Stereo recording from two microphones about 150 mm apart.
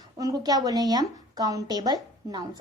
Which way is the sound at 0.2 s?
25° right (ahead or behind).